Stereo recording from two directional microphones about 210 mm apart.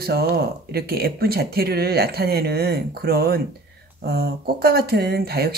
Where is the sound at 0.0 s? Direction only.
50° right (ahead or behind).